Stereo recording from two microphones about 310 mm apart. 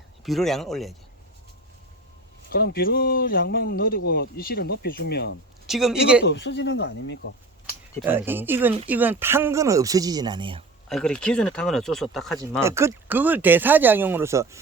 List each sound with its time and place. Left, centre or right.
0.3 s speech: centre
2.5 s speech: left
5.6 s speech: centre
6.2 s speech: left
8.0 s speech: centre
10.8 s speech: centre